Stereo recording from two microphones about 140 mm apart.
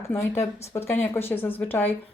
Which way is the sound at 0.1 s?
20° left (ahead or behind).